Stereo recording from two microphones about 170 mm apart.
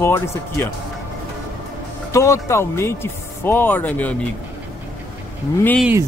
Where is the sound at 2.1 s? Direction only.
15° left (ahead or behind).